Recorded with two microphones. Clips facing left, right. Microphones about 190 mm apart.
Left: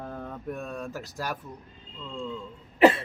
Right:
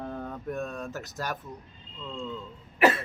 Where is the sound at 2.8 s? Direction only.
30° left (ahead or behind).